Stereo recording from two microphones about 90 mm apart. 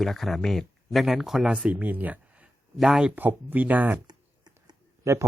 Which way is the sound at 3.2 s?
20° right (ahead or behind).